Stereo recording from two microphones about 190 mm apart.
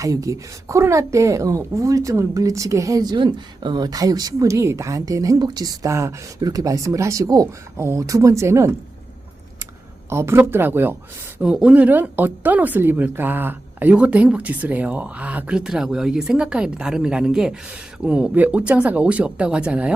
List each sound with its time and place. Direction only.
0.0 s speech: 15° right (ahead or behind)
10.1 s speech: 15° right (ahead or behind)